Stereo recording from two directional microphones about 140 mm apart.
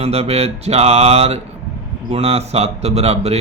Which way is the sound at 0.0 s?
45° right (ahead or behind).